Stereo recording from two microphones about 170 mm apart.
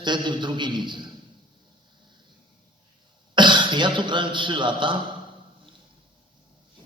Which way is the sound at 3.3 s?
25° right (ahead or behind).